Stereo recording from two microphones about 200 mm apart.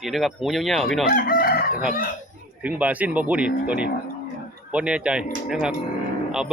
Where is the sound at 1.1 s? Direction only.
45° left (ahead or behind).